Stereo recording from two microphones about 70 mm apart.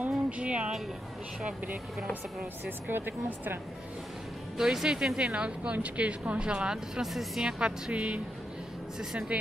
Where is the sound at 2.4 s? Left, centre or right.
Right.